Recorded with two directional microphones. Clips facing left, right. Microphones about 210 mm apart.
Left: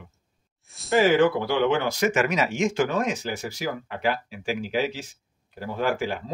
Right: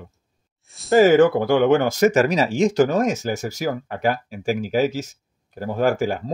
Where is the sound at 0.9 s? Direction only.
45° right (ahead or behind).